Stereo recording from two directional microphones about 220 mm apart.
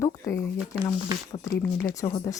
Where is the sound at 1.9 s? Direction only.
15° left (ahead or behind).